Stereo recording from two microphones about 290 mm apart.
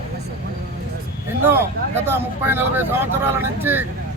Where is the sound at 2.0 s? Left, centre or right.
Centre.